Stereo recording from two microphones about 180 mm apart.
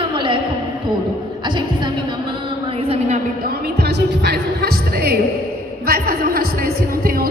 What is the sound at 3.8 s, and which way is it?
Music, 65° right (ahead or behind).